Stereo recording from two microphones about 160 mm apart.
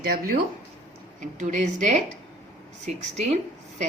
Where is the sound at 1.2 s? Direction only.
50° right (ahead or behind).